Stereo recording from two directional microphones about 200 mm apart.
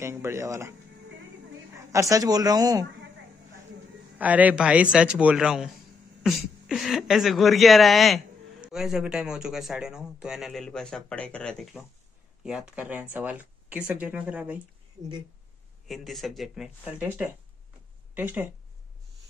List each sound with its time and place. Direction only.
0.0 s speech: 15° right (ahead or behind)
1.9 s a man's voice: 15° right (ahead or behind)
4.2 s speech: 10° right (ahead or behind)
15.9 s speech: centre (ahead or behind)